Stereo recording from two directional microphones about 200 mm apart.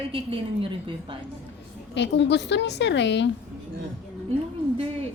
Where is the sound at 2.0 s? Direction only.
60° left (ahead or behind).